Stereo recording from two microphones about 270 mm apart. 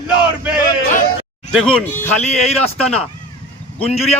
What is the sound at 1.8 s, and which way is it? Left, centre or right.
Speech, centre.